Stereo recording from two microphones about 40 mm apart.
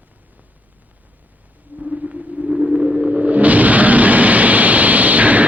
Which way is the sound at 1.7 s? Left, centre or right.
Right.